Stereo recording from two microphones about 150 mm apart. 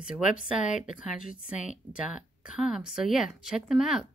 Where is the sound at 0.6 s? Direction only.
55° left (ahead or behind).